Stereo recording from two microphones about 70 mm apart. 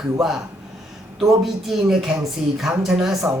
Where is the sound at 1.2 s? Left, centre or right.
Centre.